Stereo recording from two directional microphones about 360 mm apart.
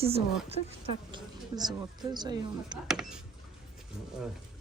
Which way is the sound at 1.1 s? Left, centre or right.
Centre.